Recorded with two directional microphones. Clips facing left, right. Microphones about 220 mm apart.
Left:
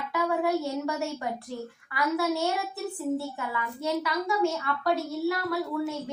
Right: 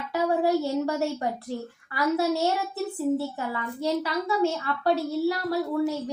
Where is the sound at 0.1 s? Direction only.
30° right (ahead or behind).